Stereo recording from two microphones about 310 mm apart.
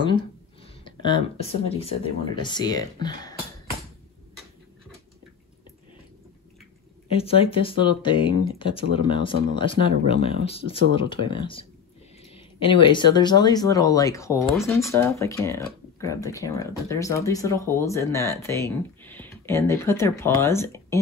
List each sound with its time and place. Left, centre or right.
0.8 s speech: centre
7.2 s speech: centre